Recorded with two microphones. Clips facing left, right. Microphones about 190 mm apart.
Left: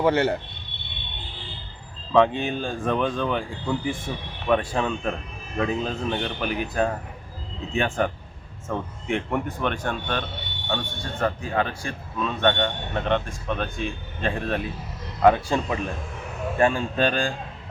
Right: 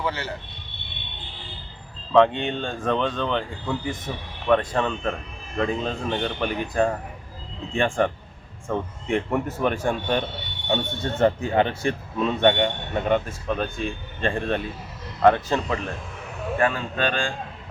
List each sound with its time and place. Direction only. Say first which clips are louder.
0.0 s speech: left 9 dB; 55° left (ahead or behind)
2.1 s speech: right 1 dB; 5° left (ahead or behind); by 10.2 s 15° right (ahead or behind)
10.7 s speech: right 5 dB; 25° right (ahead or behind); by 15.8 s 10° left (ahead or behind)
16.6 s speech: left 3 dB; 25° left (ahead or behind)